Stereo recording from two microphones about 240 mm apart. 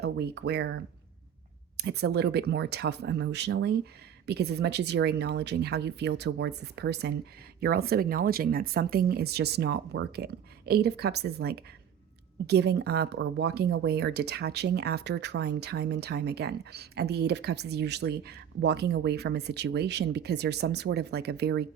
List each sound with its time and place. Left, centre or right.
0.0 s speech: right